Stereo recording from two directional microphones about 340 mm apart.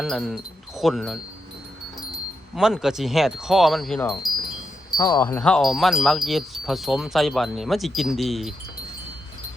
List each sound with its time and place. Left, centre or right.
0.0 s wind chime: centre
2.6 s wind chime: centre